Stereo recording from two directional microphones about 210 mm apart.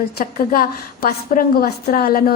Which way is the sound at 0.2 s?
45° left (ahead or behind).